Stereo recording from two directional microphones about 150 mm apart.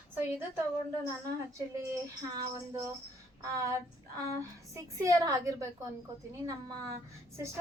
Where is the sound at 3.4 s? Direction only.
20° right (ahead or behind).